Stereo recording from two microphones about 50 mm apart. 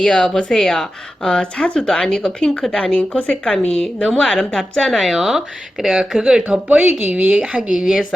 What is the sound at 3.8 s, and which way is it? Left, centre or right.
Speech, centre.